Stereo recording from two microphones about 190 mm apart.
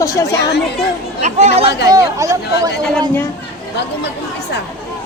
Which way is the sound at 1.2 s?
35° right (ahead or behind).